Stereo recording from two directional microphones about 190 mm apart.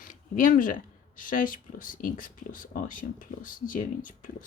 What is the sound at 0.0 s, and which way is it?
Speech, 45° left (ahead or behind).